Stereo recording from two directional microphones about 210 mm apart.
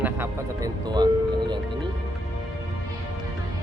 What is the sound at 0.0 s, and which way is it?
Music, 15° right (ahead or behind).